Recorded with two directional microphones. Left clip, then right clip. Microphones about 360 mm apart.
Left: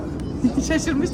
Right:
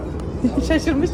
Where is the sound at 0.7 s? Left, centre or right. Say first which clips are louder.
Right 5 dB; centre.